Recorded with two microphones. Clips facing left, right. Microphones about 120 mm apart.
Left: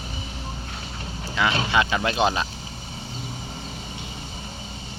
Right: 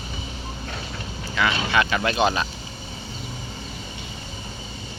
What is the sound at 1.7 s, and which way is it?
Speech, 20° left (ahead or behind).